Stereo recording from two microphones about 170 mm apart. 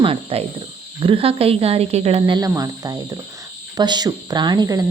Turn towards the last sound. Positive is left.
turn(degrees=-20)  # may be behind; listen again after turning